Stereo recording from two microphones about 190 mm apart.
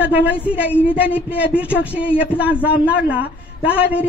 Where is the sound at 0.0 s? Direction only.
10° right (ahead or behind).